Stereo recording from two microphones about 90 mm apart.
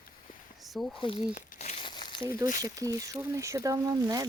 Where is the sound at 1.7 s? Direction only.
60° left (ahead or behind).